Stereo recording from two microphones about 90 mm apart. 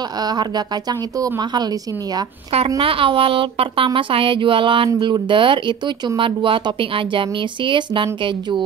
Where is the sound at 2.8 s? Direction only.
90° right.